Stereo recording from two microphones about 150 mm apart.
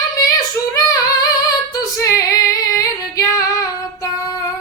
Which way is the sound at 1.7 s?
20° left (ahead or behind).